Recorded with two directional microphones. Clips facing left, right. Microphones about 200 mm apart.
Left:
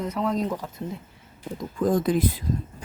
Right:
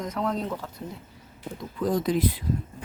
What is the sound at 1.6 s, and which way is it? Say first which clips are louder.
Speech: left 3 dB; 50° left (ahead or behind).